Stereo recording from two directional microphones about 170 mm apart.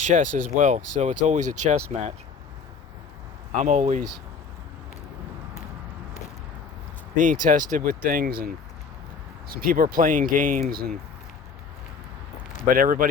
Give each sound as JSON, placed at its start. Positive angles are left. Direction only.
{"t": 0.1, "sound": "speech", "side_deg": -45}
{"t": 3.5, "sound": "speech", "side_deg": -45}
{"t": 7.2, "sound": "speech", "side_deg": -50}
{"t": 12.6, "sound": "speech", "side_deg": -55}